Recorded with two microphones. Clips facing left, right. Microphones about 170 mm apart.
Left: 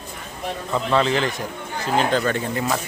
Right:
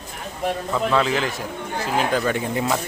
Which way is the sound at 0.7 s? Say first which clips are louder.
Left 2 dB; centre (ahead or behind).